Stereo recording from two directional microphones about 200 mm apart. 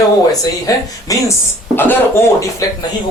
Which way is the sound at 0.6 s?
15° left (ahead or behind).